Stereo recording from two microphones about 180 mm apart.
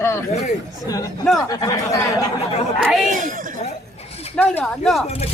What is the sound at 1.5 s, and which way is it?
Speech, 20° left (ahead or behind).